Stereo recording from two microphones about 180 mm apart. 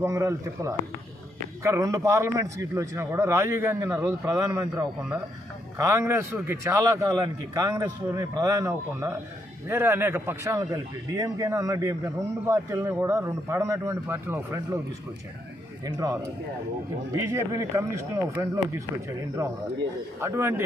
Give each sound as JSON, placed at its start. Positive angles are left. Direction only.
{"t": 0.0, "sound": "a man's voice", "side_deg": -15}
{"t": 15.8, "sound": "a man's voice", "side_deg": -20}